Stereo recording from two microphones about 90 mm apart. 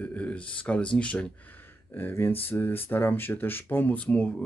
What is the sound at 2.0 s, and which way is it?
Speech, 25° left (ahead or behind).